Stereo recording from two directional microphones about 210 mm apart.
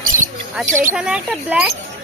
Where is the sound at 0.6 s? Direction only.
35° right (ahead or behind).